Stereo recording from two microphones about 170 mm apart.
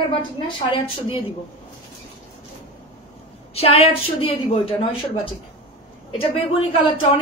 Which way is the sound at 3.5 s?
35° left (ahead or behind).